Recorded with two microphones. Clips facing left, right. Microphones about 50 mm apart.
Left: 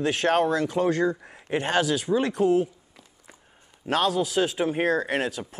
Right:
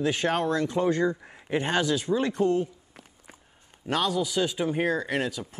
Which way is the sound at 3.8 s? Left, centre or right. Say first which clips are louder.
Left 3 dB; centre.